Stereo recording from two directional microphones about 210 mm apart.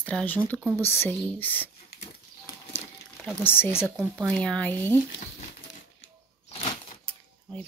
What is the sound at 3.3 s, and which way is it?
Speech, 5° left (ahead or behind).